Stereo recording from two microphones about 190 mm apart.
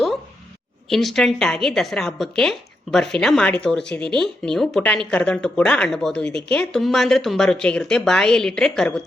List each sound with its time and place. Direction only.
0.9 s a woman's voice: centre (ahead or behind)